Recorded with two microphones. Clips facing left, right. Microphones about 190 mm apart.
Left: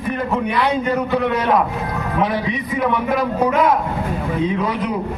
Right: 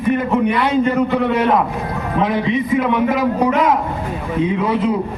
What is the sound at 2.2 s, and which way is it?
Speech, 20° right (ahead or behind).